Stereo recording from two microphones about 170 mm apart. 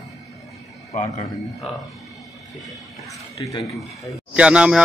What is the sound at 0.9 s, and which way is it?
Speech, 45° left (ahead or behind).